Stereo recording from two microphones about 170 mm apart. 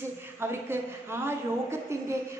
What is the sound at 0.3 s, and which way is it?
A woman's voice, 15° right (ahead or behind).